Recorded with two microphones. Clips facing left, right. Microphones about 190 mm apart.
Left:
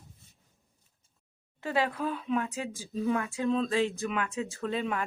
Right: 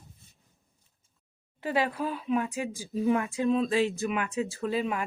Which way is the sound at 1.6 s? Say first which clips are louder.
Right 1 dB; 15° right (ahead or behind).